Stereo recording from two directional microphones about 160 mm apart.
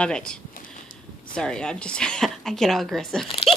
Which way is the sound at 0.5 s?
60° left (ahead or behind).